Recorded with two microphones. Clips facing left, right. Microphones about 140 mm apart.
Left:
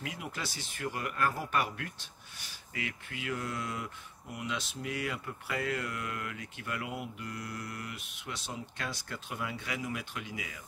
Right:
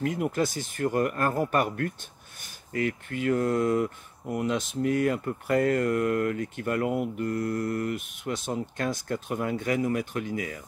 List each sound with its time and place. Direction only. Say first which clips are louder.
0.0 s speech: right 13 dB; 50° right (ahead or behind)